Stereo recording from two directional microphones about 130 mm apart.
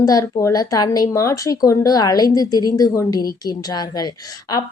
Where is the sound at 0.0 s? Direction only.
25° left (ahead or behind).